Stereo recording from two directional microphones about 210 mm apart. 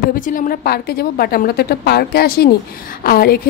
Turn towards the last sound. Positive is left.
turn(degrees=45)  # may be behind; listen again after turning